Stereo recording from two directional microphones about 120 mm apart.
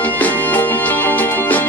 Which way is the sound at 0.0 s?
15° left (ahead or behind).